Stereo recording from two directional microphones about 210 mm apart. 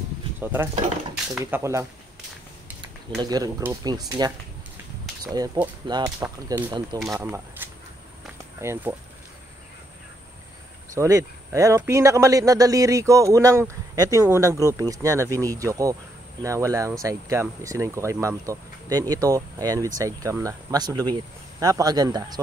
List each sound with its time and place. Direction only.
0.4 s speech: 10° right (ahead or behind)
3.2 s speech: 20° right (ahead or behind)
11.0 s speech: 15° right (ahead or behind)